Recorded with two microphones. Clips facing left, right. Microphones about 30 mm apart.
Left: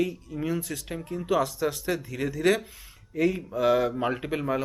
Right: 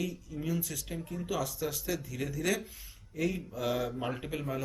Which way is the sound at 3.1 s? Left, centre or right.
Left.